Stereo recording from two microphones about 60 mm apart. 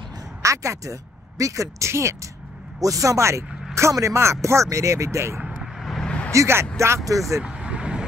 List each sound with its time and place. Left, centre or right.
0.4 s speech: right
2.8 s speech: right
5.4 s vehicle: centre
5.8 s vehicle: centre
6.0 s vehicle: centre
6.3 s speech: right
7.1 s speech: right
7.4 s vehicle: centre